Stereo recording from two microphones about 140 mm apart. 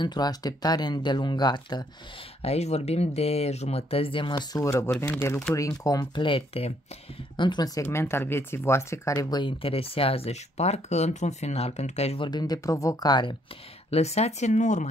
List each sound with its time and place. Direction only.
0.0 s speech: 30° left (ahead or behind)
2.4 s speech: 50° left (ahead or behind); by 7.8 s 30° left (ahead or behind)
7.8 s speech: 20° left (ahead or behind); by 12.3 s 50° left (ahead or behind)
12.3 s speech: 30° left (ahead or behind)
13.8 s speech: 50° left (ahead or behind)